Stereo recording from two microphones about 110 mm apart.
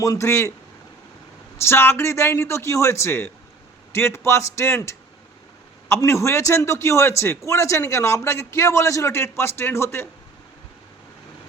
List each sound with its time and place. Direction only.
0.0 s a man's voice: 30° left (ahead or behind)
1.6 s a man's voice: 20° left (ahead or behind)